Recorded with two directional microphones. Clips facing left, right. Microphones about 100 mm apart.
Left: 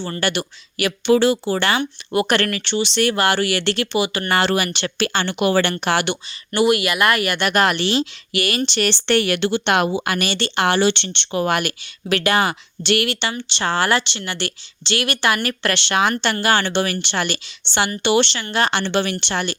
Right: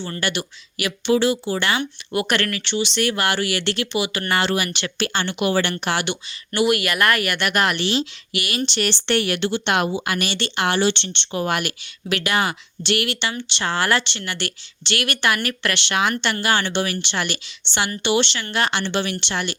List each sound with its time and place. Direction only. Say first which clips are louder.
0.0 s speech: left 3 dB; 40° left (ahead or behind)
1.8 s speech: left 4 dB; 30° left (ahead or behind)
4.3 s speech: left 2 dB; 50° left (ahead or behind)
4.9 s speech: left 3 dB; 70° left (ahead or behind)
5.2 s speech: left 3 dB; 50° left (ahead or behind)
6.5 s speech: left 2 dB; 25° left (ahead or behind); by 10.8 s 45° left (ahead or behind)
10.8 s speech: left 2 dB; 75° left (ahead or behind)
11.5 s speech: left 3 dB; 45° left (ahead or behind)
12.8 s speech: left 3 dB; 55° left (ahead or behind)
13.1 s speech: left 2 dB; 35° left (ahead or behind)